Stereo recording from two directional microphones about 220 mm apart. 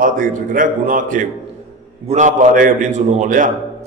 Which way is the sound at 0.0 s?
40° right (ahead or behind).